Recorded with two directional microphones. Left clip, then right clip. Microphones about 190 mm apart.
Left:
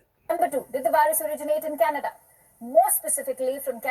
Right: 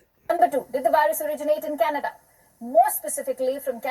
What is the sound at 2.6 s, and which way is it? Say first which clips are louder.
Speech: right 1 dB; 5° right (ahead or behind).